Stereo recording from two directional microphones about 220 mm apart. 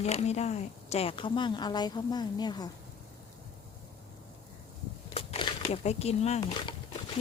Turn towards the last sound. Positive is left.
turn(degrees=25)  # may be behind; listen again after turning